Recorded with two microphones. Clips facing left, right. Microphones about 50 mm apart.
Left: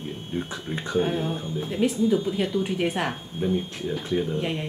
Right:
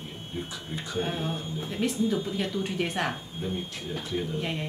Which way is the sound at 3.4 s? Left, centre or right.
Left.